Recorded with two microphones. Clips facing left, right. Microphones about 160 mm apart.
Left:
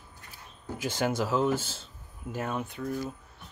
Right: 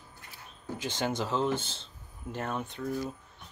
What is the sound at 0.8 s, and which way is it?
Speech, 10° left (ahead or behind).